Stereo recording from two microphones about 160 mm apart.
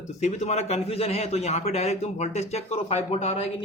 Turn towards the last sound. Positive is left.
turn(degrees=40)  # may be behind; listen again after turning